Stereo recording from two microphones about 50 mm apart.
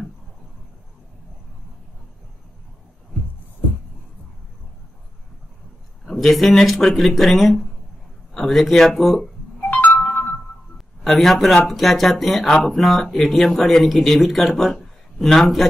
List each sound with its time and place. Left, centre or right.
6.0 s a man's voice: centre
9.6 s ringtone: left
10.0 s music: left
11.1 s a man's voice: centre
12.4 s speech: centre
12.7 s a man's voice: centre